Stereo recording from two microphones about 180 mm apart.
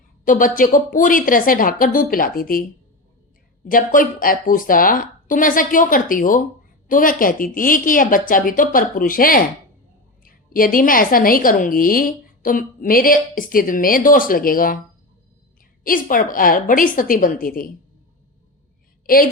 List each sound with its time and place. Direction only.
0.3 s a woman's voice: 50° left (ahead or behind)
3.7 s a woman's voice: 50° left (ahead or behind)
15.8 s a woman's voice: 50° left (ahead or behind)
19.0 s a woman's voice: 50° left (ahead or behind)